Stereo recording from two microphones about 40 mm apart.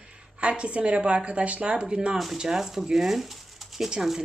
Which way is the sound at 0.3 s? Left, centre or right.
Right.